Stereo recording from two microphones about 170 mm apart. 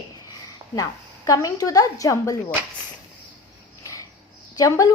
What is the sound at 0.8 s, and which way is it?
A woman's voice, 20° left (ahead or behind).